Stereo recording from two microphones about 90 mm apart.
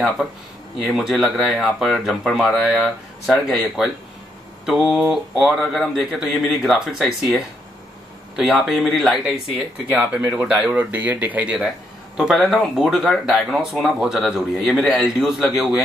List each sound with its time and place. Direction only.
0.7 s speech: 5° right (ahead or behind)
8.4 s speech: centre (ahead or behind)
9.8 s speech: 15° right (ahead or behind)
12.2 s speech: 5° right (ahead or behind)